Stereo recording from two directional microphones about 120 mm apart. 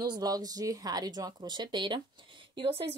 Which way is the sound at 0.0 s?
35° right (ahead or behind).